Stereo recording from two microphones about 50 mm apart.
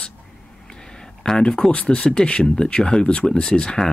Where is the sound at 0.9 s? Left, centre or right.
Centre.